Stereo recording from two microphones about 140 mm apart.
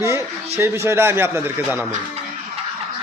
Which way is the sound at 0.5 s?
20° right (ahead or behind).